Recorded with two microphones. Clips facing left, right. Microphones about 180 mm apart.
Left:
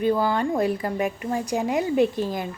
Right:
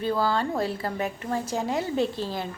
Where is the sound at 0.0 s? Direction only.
15° left (ahead or behind).